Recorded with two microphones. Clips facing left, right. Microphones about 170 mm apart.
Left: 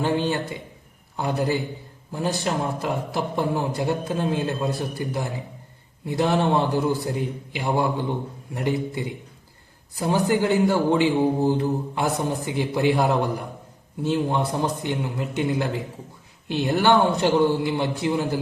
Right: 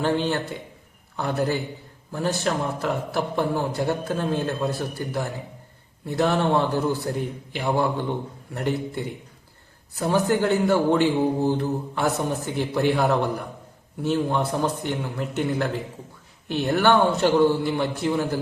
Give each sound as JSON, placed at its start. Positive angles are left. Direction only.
{"t": 0.0, "sound": "a man's voice", "side_deg": 15}
{"t": 9.9, "sound": "a man's voice", "side_deg": 15}